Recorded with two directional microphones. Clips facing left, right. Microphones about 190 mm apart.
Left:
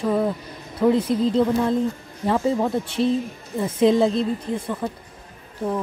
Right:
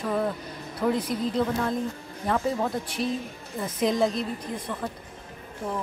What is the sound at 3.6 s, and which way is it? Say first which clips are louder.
Speech: left 7 dB; 25° left (ahead or behind).